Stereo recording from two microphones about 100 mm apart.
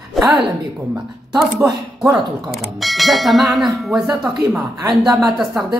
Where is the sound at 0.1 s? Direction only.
Centre (ahead or behind).